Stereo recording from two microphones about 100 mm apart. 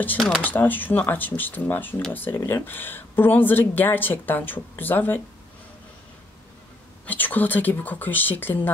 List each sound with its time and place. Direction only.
0.4 s speech: 20° left (ahead or behind)
7.1 s speech: 20° left (ahead or behind)